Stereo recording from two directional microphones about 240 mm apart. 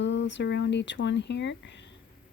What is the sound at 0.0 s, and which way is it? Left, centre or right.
Speech, left.